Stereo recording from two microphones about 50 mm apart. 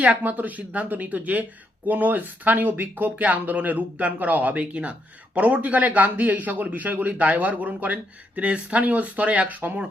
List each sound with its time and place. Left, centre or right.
0.0 s speech: right